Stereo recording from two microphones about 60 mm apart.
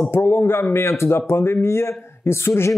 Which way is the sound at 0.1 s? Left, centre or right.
Left.